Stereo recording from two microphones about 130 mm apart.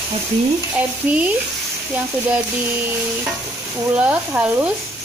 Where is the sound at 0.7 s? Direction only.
10° right (ahead or behind).